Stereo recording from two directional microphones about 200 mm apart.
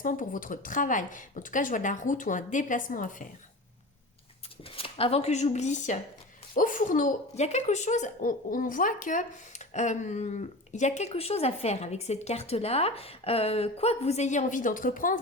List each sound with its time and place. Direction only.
0.0 s a woman's voice: 40° left (ahead or behind)
4.7 s a woman's voice: 30° left (ahead or behind)